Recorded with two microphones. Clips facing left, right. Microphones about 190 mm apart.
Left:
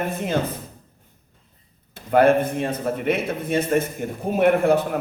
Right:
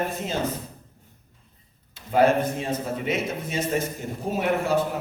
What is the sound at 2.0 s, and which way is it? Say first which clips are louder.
A man's voice: left 3 dB; 55° left (ahead or behind).